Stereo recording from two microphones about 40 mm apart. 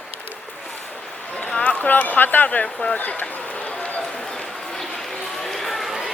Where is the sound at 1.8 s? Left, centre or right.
Left.